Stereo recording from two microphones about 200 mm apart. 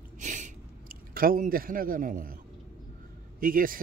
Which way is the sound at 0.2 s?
40° right (ahead or behind).